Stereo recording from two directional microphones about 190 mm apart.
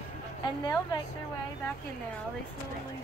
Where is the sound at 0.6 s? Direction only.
20° left (ahead or behind).